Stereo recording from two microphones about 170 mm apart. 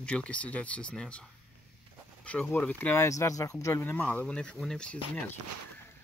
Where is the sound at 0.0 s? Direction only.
5° left (ahead or behind).